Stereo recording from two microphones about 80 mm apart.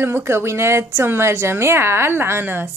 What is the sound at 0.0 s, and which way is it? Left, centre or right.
A woman's voice, right.